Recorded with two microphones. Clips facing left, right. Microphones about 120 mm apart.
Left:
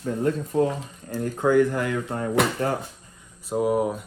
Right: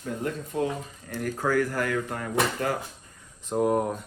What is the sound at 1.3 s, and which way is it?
Speech, 20° left (ahead or behind).